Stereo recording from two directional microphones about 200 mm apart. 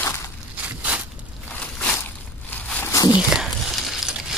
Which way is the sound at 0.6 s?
5° right (ahead or behind).